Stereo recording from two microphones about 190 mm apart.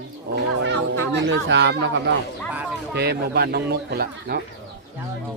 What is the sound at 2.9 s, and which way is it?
Speech, 60° right (ahead or behind).